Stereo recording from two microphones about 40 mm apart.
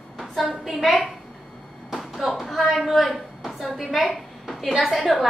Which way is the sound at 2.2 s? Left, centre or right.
Centre.